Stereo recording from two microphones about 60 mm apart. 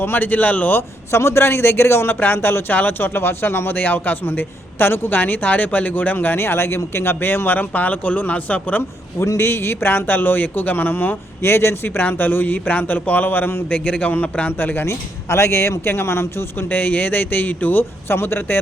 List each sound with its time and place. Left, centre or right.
0.0 s a man's voice: left
0.8 s a man's voice: left
9.1 s a man's voice: left
11.4 s a man's voice: left
15.3 s a man's voice: left
16.6 s a man's voice: left